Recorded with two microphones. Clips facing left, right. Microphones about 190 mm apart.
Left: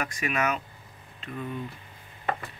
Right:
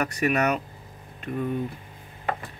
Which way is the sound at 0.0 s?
40° right (ahead or behind).